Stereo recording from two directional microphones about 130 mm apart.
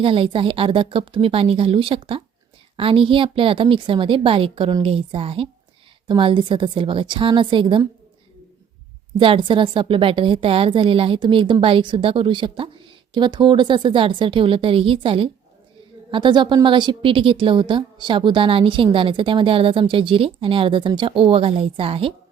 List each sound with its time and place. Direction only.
0.0 s a woman's voice: 45° right (ahead or behind)
9.1 s a woman's voice: 40° right (ahead or behind)